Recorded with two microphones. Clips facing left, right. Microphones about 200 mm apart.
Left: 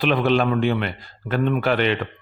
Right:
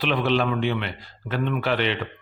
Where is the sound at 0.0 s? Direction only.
45° left (ahead or behind).